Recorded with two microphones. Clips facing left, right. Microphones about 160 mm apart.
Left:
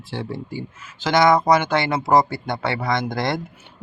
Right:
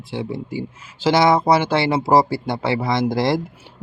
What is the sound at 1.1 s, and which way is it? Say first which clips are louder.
Speech: even; 30° right (ahead or behind).